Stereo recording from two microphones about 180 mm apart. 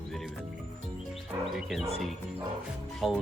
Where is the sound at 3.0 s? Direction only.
Centre (ahead or behind).